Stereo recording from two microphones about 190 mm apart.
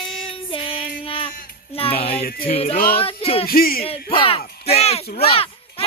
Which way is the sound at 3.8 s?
30° left (ahead or behind).